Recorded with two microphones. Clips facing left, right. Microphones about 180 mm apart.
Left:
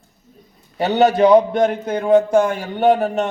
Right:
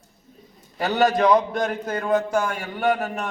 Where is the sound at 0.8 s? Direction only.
25° left (ahead or behind).